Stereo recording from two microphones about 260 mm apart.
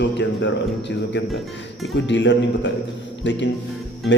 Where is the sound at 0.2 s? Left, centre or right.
Left.